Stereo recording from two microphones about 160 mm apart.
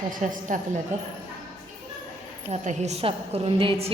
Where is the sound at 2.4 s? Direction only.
45° right (ahead or behind).